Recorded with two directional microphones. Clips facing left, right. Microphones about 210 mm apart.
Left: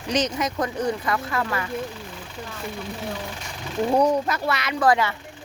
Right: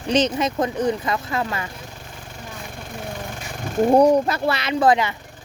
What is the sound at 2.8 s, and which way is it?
Speech, 50° right (ahead or behind).